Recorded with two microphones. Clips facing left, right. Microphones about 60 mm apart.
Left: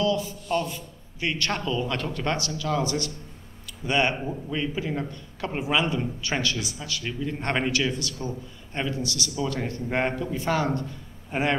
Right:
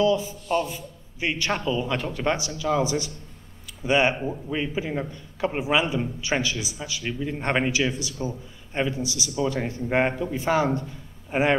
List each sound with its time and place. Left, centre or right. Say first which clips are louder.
0.0 s a man's voice: right 3 dB; right